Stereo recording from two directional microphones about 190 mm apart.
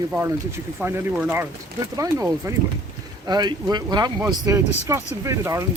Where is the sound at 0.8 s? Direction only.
10° right (ahead or behind).